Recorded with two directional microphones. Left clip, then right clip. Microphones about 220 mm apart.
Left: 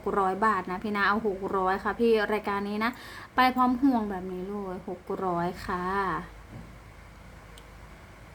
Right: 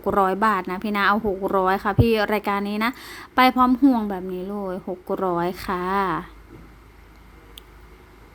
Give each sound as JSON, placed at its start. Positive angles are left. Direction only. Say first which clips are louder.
{"t": 0.0, "sound": "speech", "louder": "right 6 dB", "side_deg": -35}